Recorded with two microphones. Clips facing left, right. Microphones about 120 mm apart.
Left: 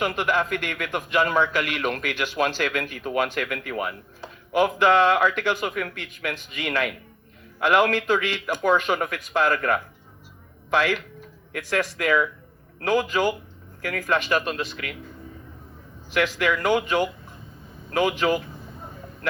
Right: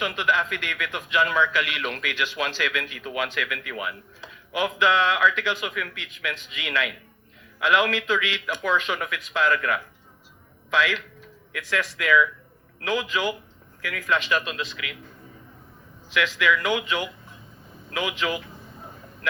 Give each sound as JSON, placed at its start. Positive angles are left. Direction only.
{"t": 0.0, "sound": "a man's voice", "side_deg": 45}
{"t": 16.1, "sound": "a man's voice", "side_deg": 45}